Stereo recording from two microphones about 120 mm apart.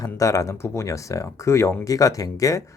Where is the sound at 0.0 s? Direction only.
30° left (ahead or behind).